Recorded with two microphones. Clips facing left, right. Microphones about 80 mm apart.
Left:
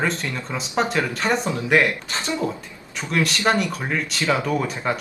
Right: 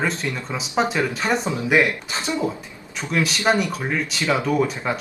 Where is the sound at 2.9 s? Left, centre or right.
Centre.